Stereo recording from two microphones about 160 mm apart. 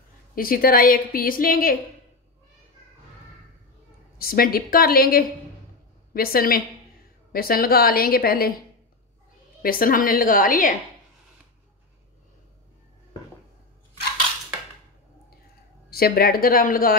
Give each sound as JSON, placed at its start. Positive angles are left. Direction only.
{"t": 0.3, "sound": "a woman's voice", "side_deg": 65}
{"t": 4.2, "sound": "a woman's voice", "side_deg": 70}
{"t": 9.6, "sound": "a woman's voice", "side_deg": 65}
{"t": 15.9, "sound": "a woman's voice", "side_deg": 70}